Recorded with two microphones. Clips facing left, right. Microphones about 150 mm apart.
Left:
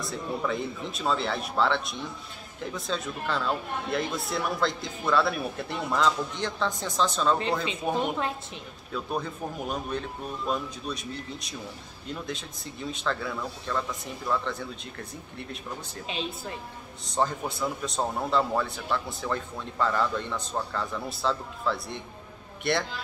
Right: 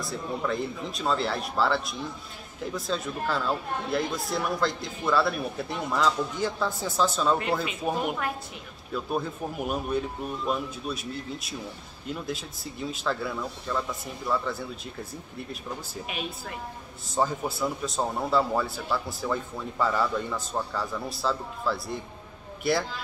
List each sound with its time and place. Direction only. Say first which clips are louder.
0.0 s a man's voice: even; centre (ahead or behind)
16.1 s speech: left 3 dB; 25° left (ahead or behind)
17.1 s a man's voice: right 1 dB; 5° right (ahead or behind)